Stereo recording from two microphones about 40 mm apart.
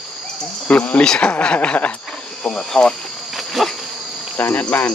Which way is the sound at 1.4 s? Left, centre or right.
Left.